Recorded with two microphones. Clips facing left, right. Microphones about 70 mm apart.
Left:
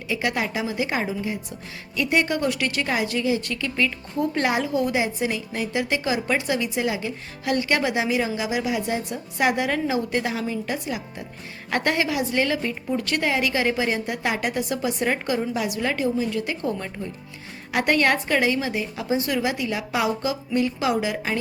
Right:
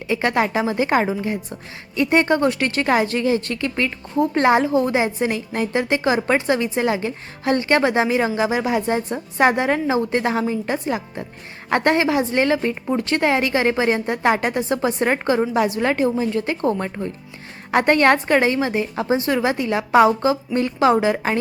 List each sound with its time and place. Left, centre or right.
0.1 s a woman's voice: right
2.0 s a woman's voice: right